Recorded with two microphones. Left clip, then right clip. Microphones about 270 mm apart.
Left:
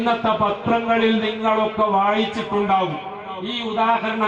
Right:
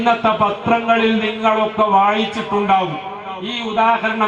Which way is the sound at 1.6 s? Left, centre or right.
Left.